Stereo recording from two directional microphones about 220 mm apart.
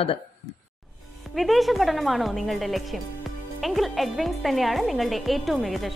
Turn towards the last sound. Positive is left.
turn(degrees=0)  # may be behind; listen again after turning